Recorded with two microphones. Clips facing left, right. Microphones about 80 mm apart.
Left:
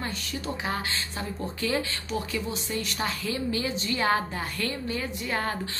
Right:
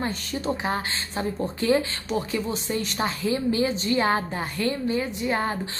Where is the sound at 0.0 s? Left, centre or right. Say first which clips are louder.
Right 5 dB; right.